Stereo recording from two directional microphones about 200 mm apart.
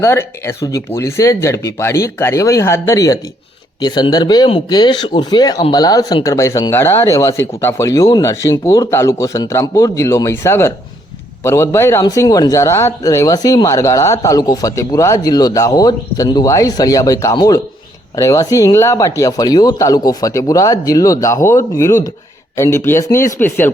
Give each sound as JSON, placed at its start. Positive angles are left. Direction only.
{"t": 0.0, "sound": "speech", "side_deg": 10}